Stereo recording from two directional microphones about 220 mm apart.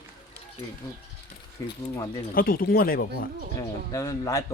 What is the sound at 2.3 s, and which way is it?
Speech, 40° left (ahead or behind).